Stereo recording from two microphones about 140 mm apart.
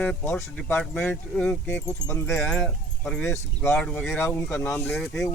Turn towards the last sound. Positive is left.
turn(degrees=0)  # may be behind; listen again after turning